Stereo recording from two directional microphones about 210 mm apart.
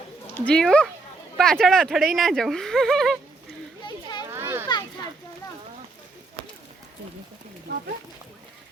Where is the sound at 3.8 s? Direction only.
20° left (ahead or behind).